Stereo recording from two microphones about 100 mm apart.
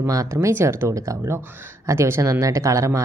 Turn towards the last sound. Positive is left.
turn(degrees=-30)  # may be behind; listen again after turning